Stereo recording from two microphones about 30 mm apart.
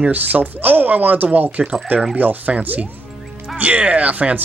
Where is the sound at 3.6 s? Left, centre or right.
Right.